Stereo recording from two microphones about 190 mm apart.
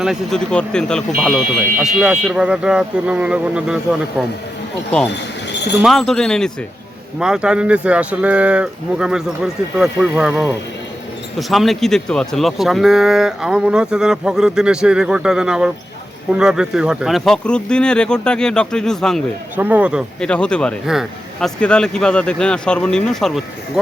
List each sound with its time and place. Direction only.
0.0 s speech: centre (ahead or behind)
5.5 s a sound: 65° left (ahead or behind)
5.8 s speech: centre (ahead or behind)
19.5 s speech: 10° right (ahead or behind)